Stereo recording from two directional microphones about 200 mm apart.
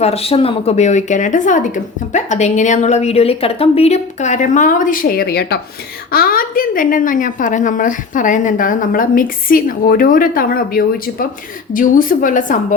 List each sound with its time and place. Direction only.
0.0 s a woman's voice: 30° left (ahead or behind)